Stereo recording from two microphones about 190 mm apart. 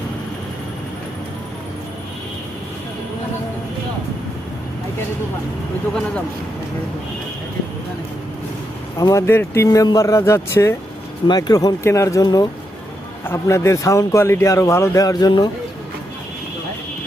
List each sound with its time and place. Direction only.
9.0 s a man's voice: 15° left (ahead or behind)